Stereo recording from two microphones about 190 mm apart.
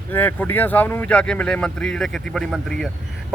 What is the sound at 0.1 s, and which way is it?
Speech, 10° left (ahead or behind).